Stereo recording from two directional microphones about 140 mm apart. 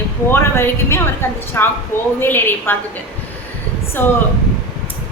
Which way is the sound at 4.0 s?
15° left (ahead or behind).